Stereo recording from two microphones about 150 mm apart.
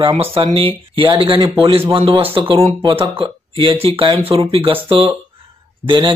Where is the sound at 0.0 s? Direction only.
40° right (ahead or behind).